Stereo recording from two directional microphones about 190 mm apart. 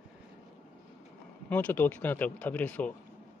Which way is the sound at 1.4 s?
10° left (ahead or behind).